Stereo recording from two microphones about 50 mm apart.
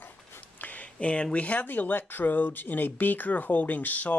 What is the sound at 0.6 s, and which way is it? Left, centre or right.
Speech, left.